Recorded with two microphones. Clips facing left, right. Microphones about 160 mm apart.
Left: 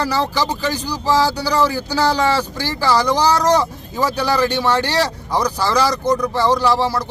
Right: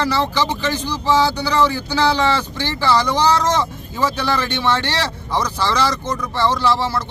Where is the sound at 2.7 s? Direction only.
10° left (ahead or behind).